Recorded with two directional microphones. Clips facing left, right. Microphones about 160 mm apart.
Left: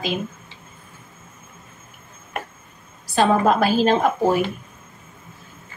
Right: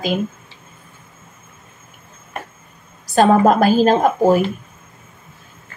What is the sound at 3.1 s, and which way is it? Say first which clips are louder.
A woman's voice: right 5 dB; 45° right (ahead or behind).